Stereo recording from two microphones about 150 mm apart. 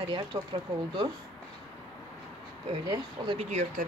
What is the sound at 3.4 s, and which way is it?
Speech, 50° right (ahead or behind).